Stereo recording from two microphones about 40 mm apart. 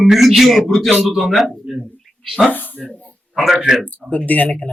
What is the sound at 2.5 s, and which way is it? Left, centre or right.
Speech, left.